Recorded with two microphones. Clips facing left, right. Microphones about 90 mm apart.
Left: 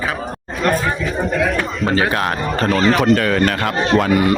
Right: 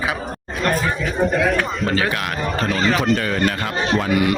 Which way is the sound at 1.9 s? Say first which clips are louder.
Left 4 dB; 35° left (ahead or behind).